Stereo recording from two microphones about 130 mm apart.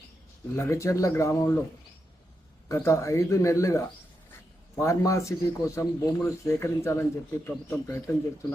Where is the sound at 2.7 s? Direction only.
20° left (ahead or behind).